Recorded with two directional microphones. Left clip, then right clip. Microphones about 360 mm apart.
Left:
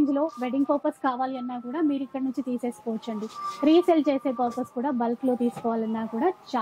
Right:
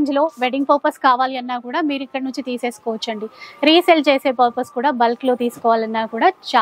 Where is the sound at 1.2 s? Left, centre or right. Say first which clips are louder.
Right 9 dB; centre.